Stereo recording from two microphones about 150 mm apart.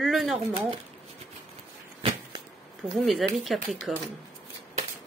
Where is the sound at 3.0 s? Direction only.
Centre (ahead or behind).